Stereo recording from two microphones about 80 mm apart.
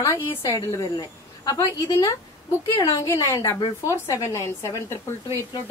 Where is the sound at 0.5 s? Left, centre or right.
Left.